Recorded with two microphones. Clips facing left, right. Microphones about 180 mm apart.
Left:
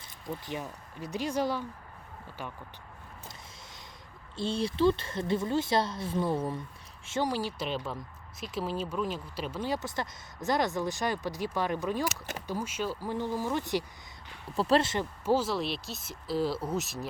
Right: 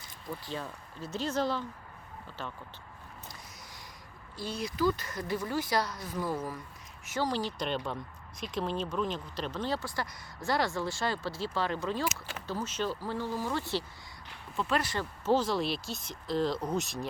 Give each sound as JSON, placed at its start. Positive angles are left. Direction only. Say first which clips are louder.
{"t": 0.4, "sound": "speech", "louder": "left 1 dB", "side_deg": 15}
{"t": 4.4, "sound": "a woman's voice", "louder": "left 4 dB", "side_deg": 25}
{"t": 7.3, "sound": "speech", "louder": "even", "side_deg": 10}
{"t": 14.5, "sound": "a woman's voice", "louder": "left 5 dB", "side_deg": 35}
{"t": 15.2, "sound": "speech", "louder": "right 1 dB", "side_deg": 10}